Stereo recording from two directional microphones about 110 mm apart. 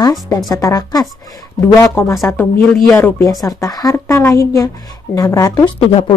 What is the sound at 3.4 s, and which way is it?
A woman's voice, 35° left (ahead or behind).